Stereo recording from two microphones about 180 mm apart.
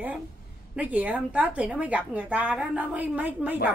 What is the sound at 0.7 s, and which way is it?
A woman's voice, 10° right (ahead or behind).